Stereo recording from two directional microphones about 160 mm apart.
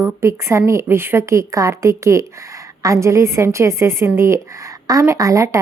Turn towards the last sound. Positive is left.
turn(degrees=-20)  # may be behind; listen again after turning